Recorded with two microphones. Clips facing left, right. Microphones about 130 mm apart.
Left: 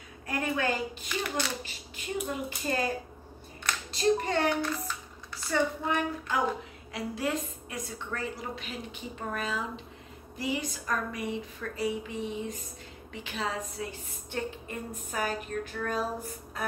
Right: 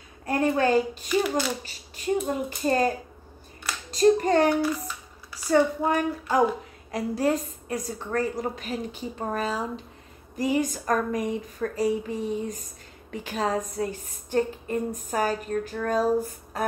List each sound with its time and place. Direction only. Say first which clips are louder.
0.3 s a sound: right 7 dB; 35° right (ahead or behind)
1.0 s speech: right 8 dB; 5° right (ahead or behind)
1.6 s a woman's voice: right 1 dB; 35° right (ahead or behind)
3.9 s a child's voice: right 8 dB; 40° right (ahead or behind)
4.6 s a sound: right 6 dB; 10° right (ahead or behind)
5.5 s a woman's voice: right 7 dB; 40° right (ahead or behind)